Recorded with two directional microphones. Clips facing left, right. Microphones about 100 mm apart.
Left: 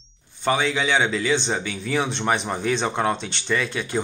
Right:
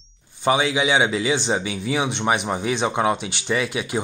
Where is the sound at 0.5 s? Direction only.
15° right (ahead or behind).